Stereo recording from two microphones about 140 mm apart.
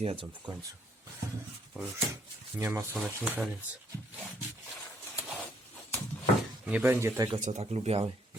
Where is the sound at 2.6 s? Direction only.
15° right (ahead or behind).